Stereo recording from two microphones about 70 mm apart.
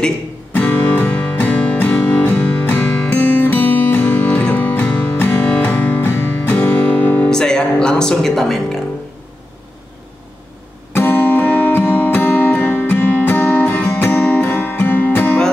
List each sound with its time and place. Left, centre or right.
0.5 s music: left
4.3 s music: centre
7.2 s music: centre
10.9 s music: left